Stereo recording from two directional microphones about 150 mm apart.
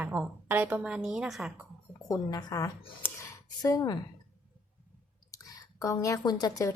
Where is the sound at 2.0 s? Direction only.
25° left (ahead or behind).